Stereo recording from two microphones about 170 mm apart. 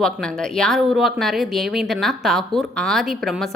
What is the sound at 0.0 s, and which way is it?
A woman's voice, 5° left (ahead or behind).